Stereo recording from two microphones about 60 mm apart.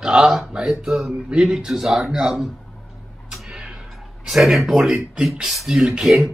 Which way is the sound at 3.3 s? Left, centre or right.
Centre.